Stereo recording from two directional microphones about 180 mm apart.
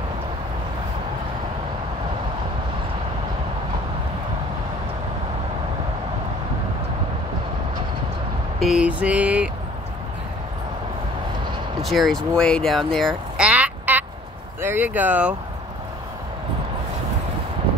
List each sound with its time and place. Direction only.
8.5 s mantra: 5° right (ahead or behind)
11.8 s speech: centre (ahead or behind)